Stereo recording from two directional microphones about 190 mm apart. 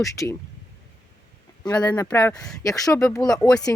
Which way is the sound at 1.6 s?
20° left (ahead or behind).